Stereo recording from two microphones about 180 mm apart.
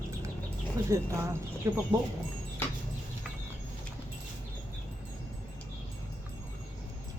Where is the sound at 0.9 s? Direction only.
15° right (ahead or behind).